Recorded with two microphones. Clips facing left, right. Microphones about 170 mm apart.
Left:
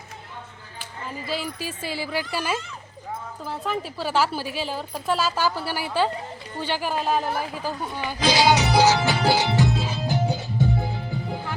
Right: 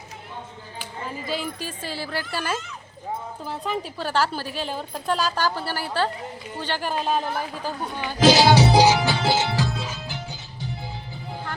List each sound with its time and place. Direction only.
1.3 s a woman's voice: centre (ahead or behind)
8.5 s music: 30° right (ahead or behind)
9.0 s music: centre (ahead or behind)
9.2 s music: 15° left (ahead or behind); by 10.8 s 55° left (ahead or behind)